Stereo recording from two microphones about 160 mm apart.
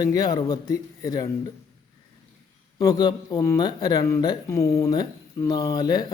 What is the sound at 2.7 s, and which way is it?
Mantra, 25° left (ahead or behind).